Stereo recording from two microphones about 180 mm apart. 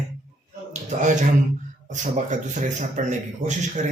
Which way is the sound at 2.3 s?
45° right (ahead or behind).